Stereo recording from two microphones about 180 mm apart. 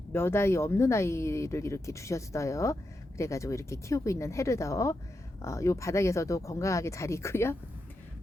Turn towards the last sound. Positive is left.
turn(degrees=15)  # may be behind; listen again after turning